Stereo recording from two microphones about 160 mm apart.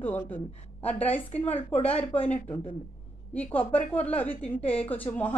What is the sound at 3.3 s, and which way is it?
A woman's voice, 10° left (ahead or behind).